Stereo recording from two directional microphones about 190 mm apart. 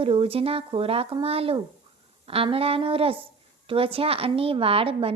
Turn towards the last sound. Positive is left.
turn(degrees=-30)  # may be behind; listen again after turning